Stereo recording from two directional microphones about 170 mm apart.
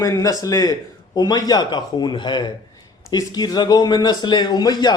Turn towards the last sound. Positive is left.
turn(degrees=25)  # may be behind; listen again after turning